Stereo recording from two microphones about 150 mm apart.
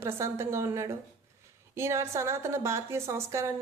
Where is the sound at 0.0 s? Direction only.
20° right (ahead or behind).